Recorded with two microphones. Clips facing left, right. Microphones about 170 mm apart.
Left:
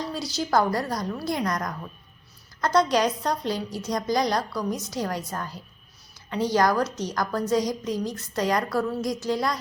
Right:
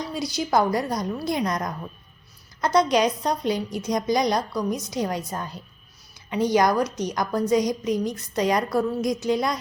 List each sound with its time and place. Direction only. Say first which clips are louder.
0.1 s a woman's voice: right 2 dB; 15° right (ahead or behind)